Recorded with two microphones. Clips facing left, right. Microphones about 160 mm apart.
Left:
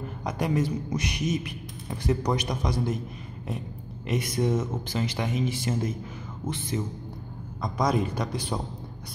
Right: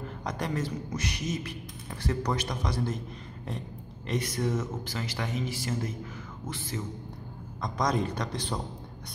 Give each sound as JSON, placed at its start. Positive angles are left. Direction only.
{"t": 0.2, "sound": "speech", "side_deg": 10}
{"t": 4.1, "sound": "speech", "side_deg": 15}
{"t": 7.6, "sound": "speech", "side_deg": 5}